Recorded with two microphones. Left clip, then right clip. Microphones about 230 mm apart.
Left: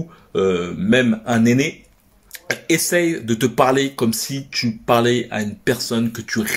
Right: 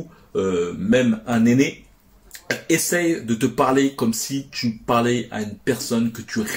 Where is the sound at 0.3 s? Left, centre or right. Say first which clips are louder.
Left 3 dB; left.